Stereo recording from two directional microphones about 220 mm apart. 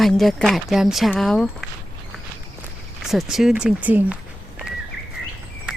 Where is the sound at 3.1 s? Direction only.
Centre (ahead or behind).